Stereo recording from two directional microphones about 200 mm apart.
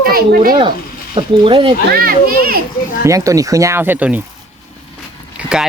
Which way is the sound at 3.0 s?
15° right (ahead or behind).